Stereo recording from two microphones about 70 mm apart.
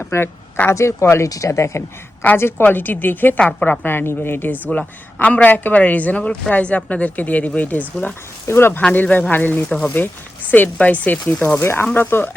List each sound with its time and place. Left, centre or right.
0.1 s a sound: left
0.7 s speech: left
2.4 s a woman's voice: left
3.4 s a woman's voice: centre
3.8 s speech: left
4.6 s a woman's voice: centre
8.4 s speech: left
8.8 s a woman's voice: centre
9.6 s speech: centre
9.9 s a woman's voice: left
11.6 s a woman's voice: left